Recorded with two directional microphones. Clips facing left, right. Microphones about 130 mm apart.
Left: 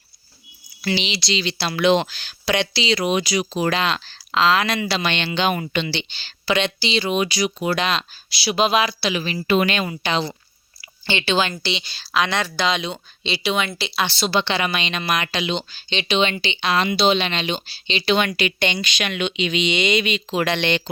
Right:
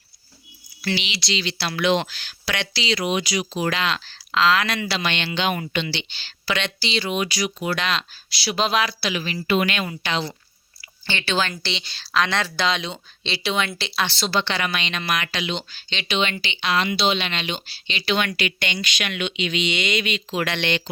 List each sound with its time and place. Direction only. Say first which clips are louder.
0.9 s speech: left 6 dB; 30° left (ahead or behind)
3.0 s speech: left 3 dB; 40° left (ahead or behind); by 9.0 s 15° left (ahead or behind)
9.0 s speech: left 3 dB; 25° left (ahead or behind)
11.6 s speech: left 4 dB; 5° left (ahead or behind); by 20.9 s 30° left (ahead or behind)